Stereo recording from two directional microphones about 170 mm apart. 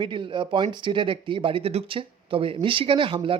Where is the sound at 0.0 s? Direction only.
30° right (ahead or behind).